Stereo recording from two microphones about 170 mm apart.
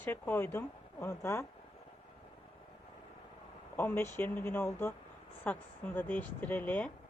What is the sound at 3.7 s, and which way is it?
A woman's voice, 15° left (ahead or behind).